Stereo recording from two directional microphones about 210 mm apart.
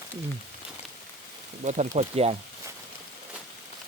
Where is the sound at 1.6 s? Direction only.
35° right (ahead or behind).